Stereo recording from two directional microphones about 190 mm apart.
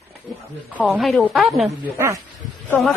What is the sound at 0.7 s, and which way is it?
Speech, 5° right (ahead or behind).